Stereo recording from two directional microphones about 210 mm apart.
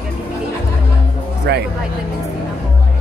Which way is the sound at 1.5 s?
50° right (ahead or behind).